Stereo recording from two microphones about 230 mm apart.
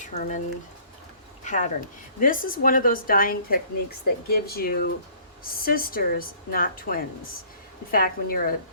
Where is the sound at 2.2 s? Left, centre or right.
Left.